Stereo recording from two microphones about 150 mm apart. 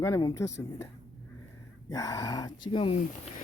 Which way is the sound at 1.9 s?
25° left (ahead or behind).